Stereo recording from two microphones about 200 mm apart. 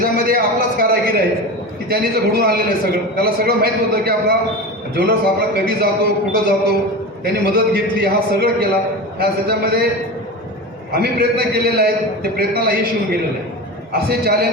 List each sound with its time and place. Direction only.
0.0 s a man's voice: 45° right (ahead or behind)
10.9 s a man's voice: 50° right (ahead or behind)